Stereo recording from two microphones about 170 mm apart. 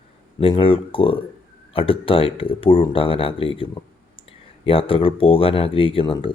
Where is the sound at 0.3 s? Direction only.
35° left (ahead or behind).